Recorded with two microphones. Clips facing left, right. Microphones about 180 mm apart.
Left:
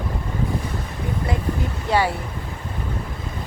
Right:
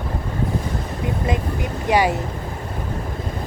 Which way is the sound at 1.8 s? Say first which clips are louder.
Right 3 dB; 15° right (ahead or behind).